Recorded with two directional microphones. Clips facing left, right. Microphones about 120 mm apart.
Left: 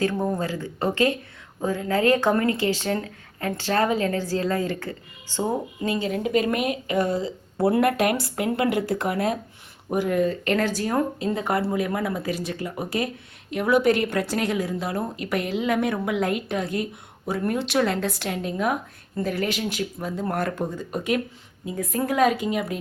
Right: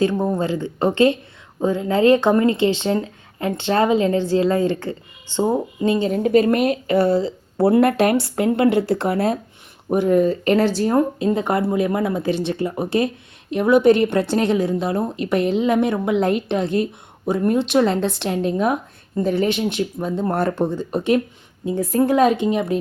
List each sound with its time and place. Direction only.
0.0 s speech: 20° right (ahead or behind)
6.1 s a woman's voice: 40° right (ahead or behind)
10.5 s speech: 30° right (ahead or behind)